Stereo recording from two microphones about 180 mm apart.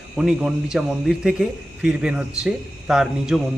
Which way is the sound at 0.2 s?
5° right (ahead or behind).